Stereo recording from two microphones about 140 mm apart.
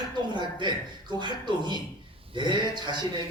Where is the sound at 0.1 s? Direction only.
30° right (ahead or behind).